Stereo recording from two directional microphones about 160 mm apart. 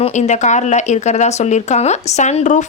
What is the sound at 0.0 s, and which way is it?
A woman's voice, 45° left (ahead or behind).